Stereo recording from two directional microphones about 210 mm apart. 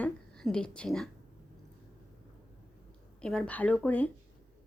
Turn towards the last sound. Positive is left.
turn(degrees=10)  # may be behind; listen again after turning